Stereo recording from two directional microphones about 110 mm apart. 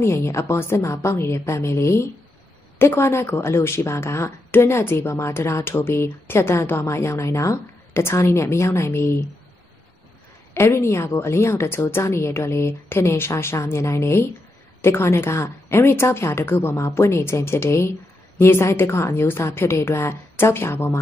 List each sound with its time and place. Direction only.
0.0 s a woman's voice: 25° left (ahead or behind)
10.5 s a woman's voice: 25° left (ahead or behind)